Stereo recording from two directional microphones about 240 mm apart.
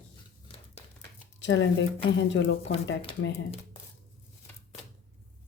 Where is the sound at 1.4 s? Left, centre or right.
Left.